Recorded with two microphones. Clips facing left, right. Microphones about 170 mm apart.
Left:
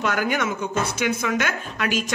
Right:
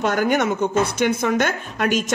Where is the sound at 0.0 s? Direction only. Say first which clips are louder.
Right 4 dB; 50° right (ahead or behind).